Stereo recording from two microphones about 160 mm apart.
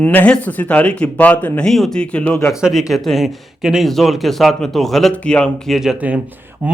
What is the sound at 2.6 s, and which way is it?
A man's voice, 5° right (ahead or behind).